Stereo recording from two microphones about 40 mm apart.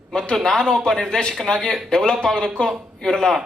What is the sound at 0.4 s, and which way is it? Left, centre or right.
Speech, centre.